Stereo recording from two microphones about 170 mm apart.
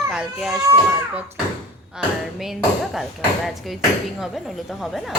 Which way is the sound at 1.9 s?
Centre (ahead or behind).